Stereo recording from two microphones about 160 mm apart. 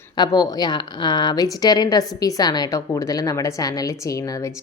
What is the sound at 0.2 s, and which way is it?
A woman's voice, 25° left (ahead or behind).